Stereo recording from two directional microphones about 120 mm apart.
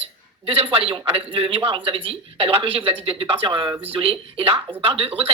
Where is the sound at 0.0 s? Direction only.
50° right (ahead or behind).